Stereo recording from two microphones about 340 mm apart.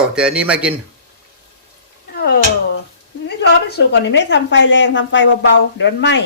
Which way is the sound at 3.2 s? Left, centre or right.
Left.